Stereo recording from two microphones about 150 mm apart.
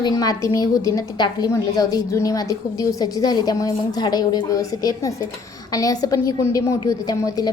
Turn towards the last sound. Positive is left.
turn(degrees=25)  # may be behind; listen again after turning